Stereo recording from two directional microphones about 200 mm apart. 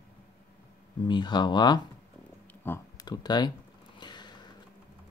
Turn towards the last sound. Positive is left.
turn(degrees=20)  # may be behind; listen again after turning